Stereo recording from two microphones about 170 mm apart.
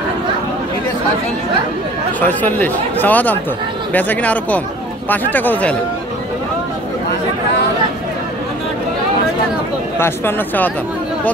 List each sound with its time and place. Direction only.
2.1 s speech: 10° left (ahead or behind)
9.9 s speech: 15° left (ahead or behind)